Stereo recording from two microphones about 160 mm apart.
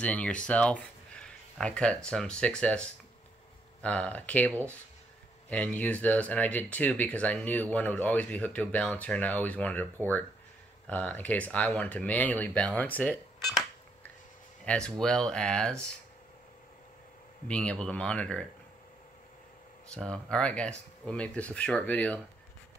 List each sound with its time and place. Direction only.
0.0 s speech: 10° left (ahead or behind)
17.5 s speech: 5° left (ahead or behind)
19.9 s speech: 5° left (ahead or behind)